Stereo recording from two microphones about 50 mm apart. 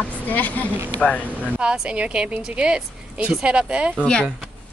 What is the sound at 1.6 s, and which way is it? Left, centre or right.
A woman's voice, centre.